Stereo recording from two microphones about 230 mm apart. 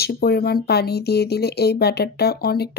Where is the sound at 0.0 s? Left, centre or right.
Left.